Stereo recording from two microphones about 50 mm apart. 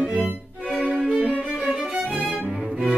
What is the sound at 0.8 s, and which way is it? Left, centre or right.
Violin, right.